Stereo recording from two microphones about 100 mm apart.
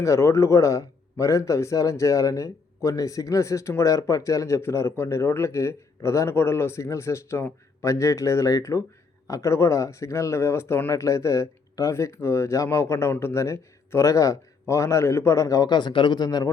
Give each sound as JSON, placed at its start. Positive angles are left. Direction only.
{"t": 0.0, "sound": "a man's voice", "side_deg": 30}